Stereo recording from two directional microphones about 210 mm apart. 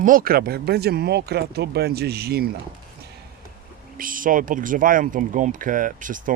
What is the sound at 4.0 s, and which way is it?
Speech, 40° right (ahead or behind).